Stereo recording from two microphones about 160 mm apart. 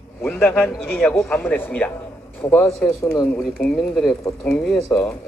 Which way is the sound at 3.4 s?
Centre (ahead or behind).